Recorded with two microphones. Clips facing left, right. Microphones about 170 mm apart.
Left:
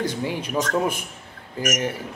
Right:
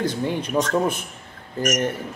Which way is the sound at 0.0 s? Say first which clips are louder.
Right 2 dB; 10° left (ahead or behind).